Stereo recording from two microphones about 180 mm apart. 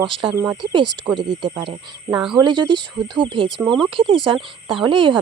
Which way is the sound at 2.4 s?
25° right (ahead or behind).